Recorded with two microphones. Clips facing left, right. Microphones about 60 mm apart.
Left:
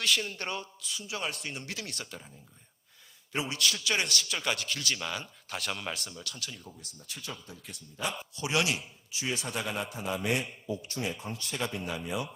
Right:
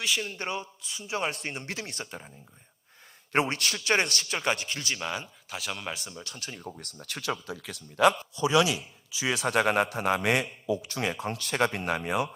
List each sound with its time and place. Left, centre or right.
0.0 s a man's voice: centre; by 2.3 s right
3.3 s a man's voice: right; by 5.3 s centre
5.5 s speech: centre
6.2 s speech: right
6.7 s a man's voice: right
9.2 s a man's voice: right